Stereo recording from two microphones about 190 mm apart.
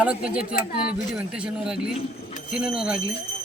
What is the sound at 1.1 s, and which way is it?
Speech, 5° right (ahead or behind).